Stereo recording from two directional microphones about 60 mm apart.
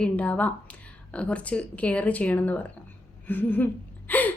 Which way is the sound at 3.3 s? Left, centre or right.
Left.